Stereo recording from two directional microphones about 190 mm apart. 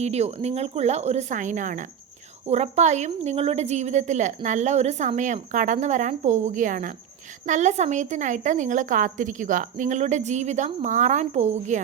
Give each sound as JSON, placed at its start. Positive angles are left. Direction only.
{"t": 0.0, "sound": "a woman's voice", "side_deg": -35}